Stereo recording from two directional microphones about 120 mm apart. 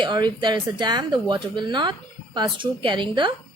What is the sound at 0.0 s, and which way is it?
A woman's voice, 40° right (ahead or behind).